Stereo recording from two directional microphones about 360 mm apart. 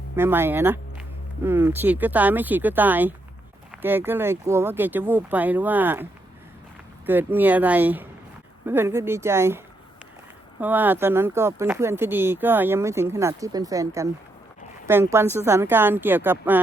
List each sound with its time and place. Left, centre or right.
0.2 s speech: centre
10.6 s speech: centre